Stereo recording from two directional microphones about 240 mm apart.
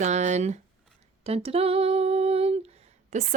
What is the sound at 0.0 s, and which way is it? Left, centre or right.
Speech, right.